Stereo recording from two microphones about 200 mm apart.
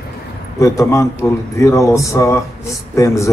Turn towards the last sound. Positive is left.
turn(degrees=15)  # may be behind; listen again after turning